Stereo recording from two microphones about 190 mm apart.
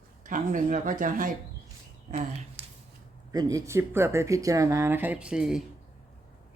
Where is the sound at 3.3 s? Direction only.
20° right (ahead or behind).